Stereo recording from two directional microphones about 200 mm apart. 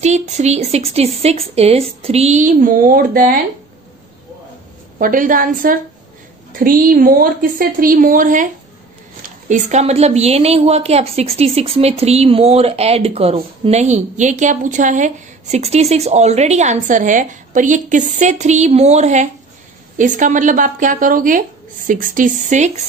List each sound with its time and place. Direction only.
0.0 s a woman's voice: 35° right (ahead or behind)
4.9 s a woman's voice: 45° right (ahead or behind)
9.5 s a woman's voice: 35° right (ahead or behind)